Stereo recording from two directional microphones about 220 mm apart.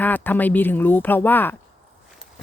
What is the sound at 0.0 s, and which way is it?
Speech, 10° left (ahead or behind).